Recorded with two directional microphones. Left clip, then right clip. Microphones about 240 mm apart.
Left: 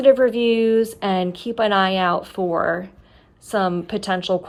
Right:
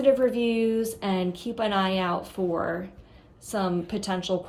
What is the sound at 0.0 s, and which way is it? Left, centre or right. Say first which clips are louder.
A woman's voice: left 7 dB; left.